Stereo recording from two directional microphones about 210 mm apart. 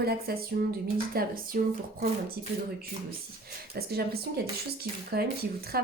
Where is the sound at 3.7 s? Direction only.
45° right (ahead or behind).